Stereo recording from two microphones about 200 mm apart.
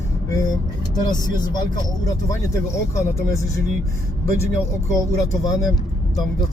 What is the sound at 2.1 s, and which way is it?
Speech, 15° left (ahead or behind).